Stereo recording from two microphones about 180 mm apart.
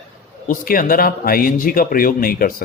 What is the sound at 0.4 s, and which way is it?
A man's voice, 50° left (ahead or behind).